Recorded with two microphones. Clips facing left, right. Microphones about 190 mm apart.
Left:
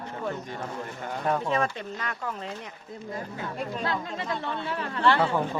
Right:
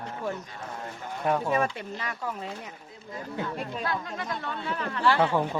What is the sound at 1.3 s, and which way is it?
Speech, 5° right (ahead or behind).